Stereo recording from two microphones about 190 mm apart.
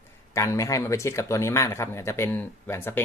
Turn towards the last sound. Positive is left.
turn(degrees=10)  # may be behind; listen again after turning